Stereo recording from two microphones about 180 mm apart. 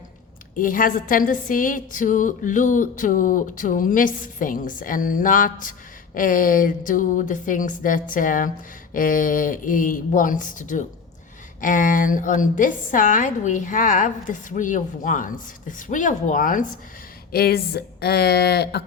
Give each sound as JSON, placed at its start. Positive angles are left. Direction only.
{"t": 0.5, "sound": "a woman's voice", "side_deg": 50}
{"t": 17.3, "sound": "speech", "side_deg": 60}